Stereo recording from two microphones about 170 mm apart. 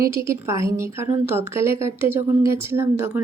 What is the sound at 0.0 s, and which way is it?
A woman's voice, 15° right (ahead or behind).